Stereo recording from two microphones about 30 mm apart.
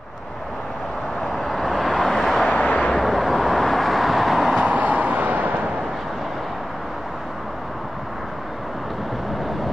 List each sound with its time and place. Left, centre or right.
1.4 s vehicle: centre
2.4 s vehicle: left
3.0 s vehicle: centre
4.6 s vehicle: right